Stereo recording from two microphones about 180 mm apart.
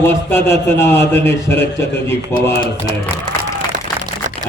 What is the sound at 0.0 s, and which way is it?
A man's voice, 15° left (ahead or behind).